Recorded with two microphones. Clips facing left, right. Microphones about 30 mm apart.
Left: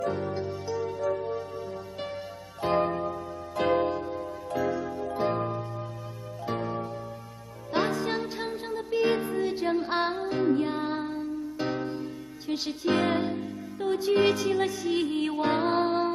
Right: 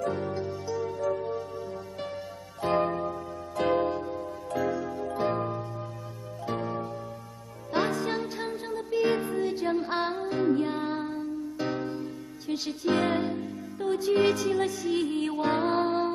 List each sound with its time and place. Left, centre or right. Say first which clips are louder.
0.0 s music: even; centre
2.6 s music: even; centre